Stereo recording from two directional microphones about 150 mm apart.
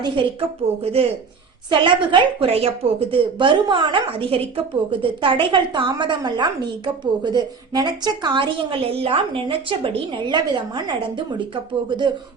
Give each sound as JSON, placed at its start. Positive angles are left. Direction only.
{"t": 0.0, "sound": "speech", "side_deg": -35}